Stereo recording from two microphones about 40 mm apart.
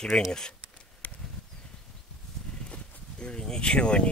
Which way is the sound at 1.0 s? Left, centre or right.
Left.